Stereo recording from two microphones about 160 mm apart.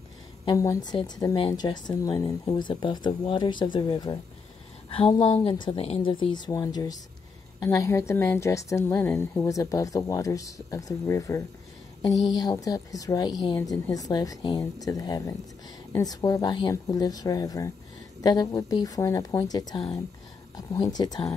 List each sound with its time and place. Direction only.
0.5 s a woman's voice: 20° left (ahead or behind)